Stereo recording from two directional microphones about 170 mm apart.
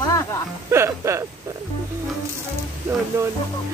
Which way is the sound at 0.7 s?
15° right (ahead or behind).